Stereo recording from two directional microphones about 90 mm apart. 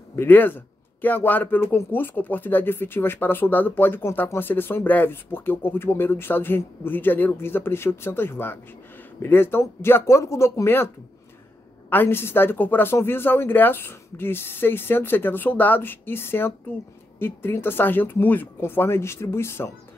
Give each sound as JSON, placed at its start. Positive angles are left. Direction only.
{"t": 0.1, "sound": "speech", "side_deg": 25}
{"t": 11.9, "sound": "speech", "side_deg": 25}